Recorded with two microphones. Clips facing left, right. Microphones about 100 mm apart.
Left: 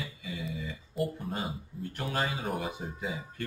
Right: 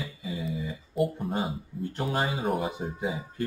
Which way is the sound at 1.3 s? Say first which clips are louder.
Right 5 dB; 35° right (ahead or behind).